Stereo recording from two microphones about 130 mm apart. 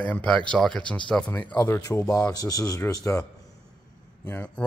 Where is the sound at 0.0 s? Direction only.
10° left (ahead or behind).